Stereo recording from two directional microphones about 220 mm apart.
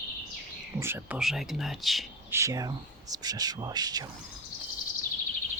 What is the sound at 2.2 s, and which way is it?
Speech, 15° right (ahead or behind).